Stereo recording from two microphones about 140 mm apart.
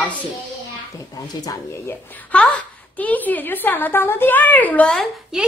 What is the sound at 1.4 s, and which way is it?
Speech, 25° left (ahead or behind).